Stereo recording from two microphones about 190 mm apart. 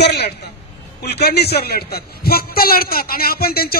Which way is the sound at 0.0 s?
60° left (ahead or behind).